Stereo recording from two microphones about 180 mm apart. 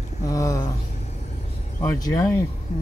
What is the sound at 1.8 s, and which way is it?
Speech, 20° left (ahead or behind).